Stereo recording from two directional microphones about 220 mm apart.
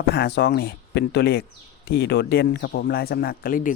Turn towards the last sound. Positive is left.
turn(degrees=40)  # may be behind; listen again after turning